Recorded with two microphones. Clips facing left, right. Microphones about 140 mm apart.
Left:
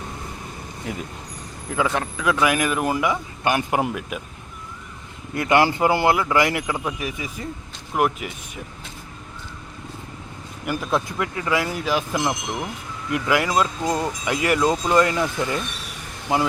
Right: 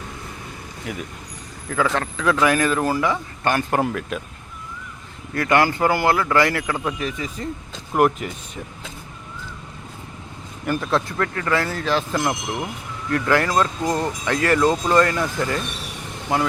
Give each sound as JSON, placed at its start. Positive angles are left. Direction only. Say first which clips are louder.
{"t": 0.9, "sound": "speech", "louder": "even", "side_deg": 25}
{"t": 5.3, "sound": "speech", "louder": "even", "side_deg": 20}
{"t": 10.7, "sound": "speech", "louder": "right 2 dB", "side_deg": 15}